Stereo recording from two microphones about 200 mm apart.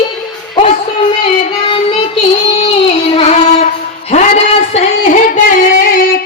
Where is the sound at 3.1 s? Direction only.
35° left (ahead or behind).